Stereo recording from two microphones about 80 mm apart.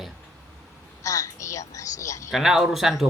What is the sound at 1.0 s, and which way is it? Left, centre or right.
Speech, left.